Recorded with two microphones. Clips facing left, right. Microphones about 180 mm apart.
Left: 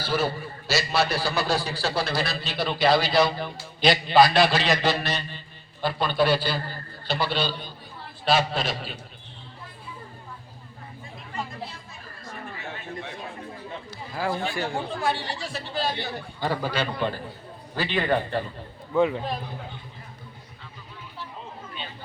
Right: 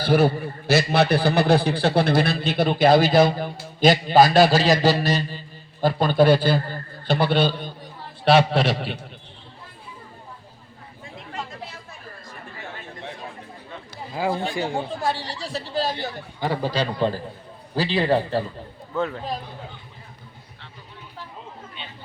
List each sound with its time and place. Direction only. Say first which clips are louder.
0.0 s a man's voice: right 7 dB; 55° right (ahead or behind)
14.1 s speech: right 3 dB; 15° right (ahead or behind)
15.0 s speech: right 1 dB; 35° right (ahead or behind)
16.4 s speech: right 3 dB; 25° right (ahead or behind)
18.9 s a man's voice: left 4 dB; 10° left (ahead or behind)